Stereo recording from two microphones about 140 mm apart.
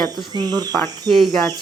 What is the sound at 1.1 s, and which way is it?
Speech, centre (ahead or behind).